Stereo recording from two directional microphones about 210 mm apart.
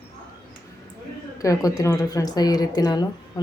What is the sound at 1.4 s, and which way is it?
A woman's voice, 15° left (ahead or behind).